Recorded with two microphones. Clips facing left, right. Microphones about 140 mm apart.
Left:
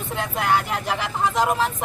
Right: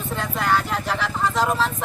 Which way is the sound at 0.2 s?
15° left (ahead or behind).